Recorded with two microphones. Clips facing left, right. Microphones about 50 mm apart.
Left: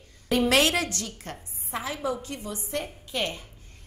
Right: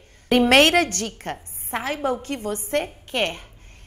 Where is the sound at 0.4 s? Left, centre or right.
Right.